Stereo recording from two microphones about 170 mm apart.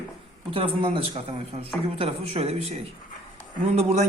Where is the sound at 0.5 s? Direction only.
30° right (ahead or behind).